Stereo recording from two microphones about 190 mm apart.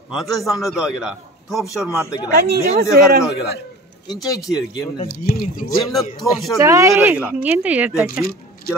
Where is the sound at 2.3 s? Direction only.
55° right (ahead or behind).